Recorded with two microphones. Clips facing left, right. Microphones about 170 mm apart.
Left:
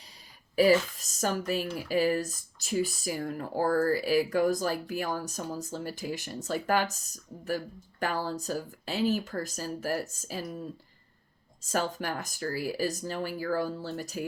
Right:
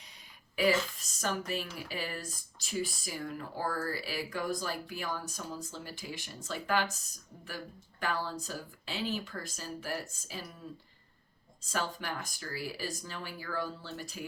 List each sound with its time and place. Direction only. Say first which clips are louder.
0.5 s speech: left 7 dB; 40° left (ahead or behind)
11.7 s speech: left 5 dB; 45° left (ahead or behind)